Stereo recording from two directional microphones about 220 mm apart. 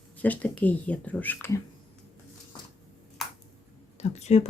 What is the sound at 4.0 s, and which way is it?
Speech, 30° left (ahead or behind).